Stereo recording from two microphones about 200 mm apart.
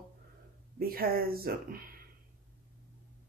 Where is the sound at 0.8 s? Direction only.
50° right (ahead or behind).